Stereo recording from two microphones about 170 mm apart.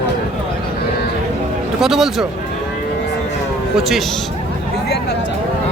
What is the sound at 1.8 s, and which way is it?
Speech, centre (ahead or behind).